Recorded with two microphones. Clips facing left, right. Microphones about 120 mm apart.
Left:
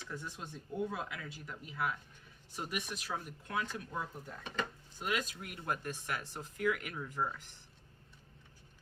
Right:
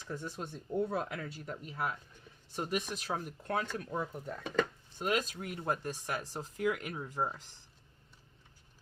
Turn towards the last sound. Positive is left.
turn(degrees=-30)  # may be behind; listen again after turning